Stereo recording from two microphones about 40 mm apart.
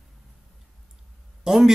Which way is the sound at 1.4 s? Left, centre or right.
Centre.